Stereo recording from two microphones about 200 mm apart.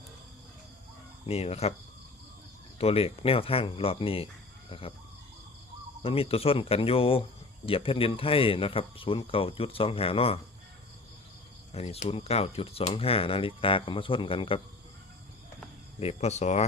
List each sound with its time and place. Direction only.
1.3 s speech: 30° left (ahead or behind)
2.7 s speech: 30° left (ahead or behind)
6.0 s speech: 30° left (ahead or behind)
11.7 s speech: 30° left (ahead or behind)
16.0 s speech: 30° left (ahead or behind)